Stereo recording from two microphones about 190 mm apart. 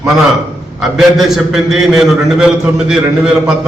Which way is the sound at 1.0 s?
Centre (ahead or behind).